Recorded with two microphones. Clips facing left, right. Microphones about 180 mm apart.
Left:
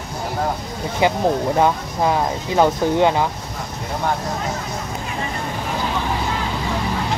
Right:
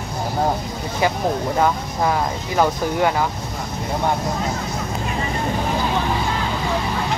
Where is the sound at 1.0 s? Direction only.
20° left (ahead or behind).